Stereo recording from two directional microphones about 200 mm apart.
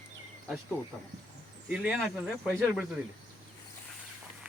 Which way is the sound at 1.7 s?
5° right (ahead or behind).